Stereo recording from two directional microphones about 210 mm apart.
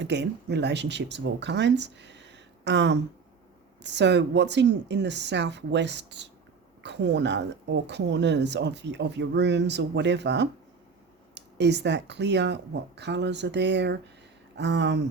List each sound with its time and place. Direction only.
0.0 s speech: 55° right (ahead or behind)